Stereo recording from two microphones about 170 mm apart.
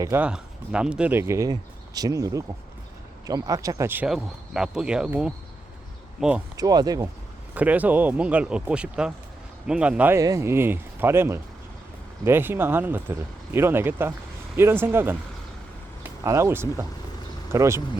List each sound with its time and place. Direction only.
0.0 s speech: 15° right (ahead or behind)
6.6 s speech: 20° right (ahead or behind)
7.5 s speech: 10° right (ahead or behind)
16.2 s speech: 15° right (ahead or behind)